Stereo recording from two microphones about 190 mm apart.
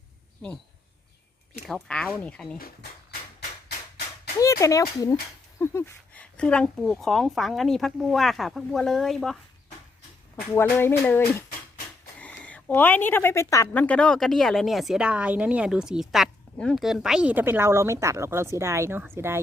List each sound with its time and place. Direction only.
1.6 s speech: 5° left (ahead or behind)
2.6 s speech: 50° left (ahead or behind)
4.4 s speech: 15° left (ahead or behind); by 9.4 s centre (ahead or behind)
10.5 s speech: 10° left (ahead or behind); by 19.4 s 10° right (ahead or behind)